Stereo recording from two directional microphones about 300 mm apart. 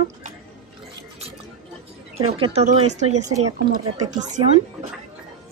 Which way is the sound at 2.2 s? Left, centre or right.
Centre.